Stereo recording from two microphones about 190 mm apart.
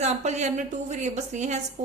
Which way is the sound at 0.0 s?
35° right (ahead or behind).